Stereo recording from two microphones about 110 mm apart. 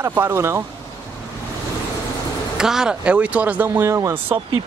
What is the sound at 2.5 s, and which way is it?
Speech, 5° right (ahead or behind).